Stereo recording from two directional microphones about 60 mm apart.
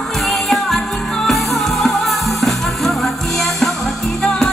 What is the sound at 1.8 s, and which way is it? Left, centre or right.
Music, centre.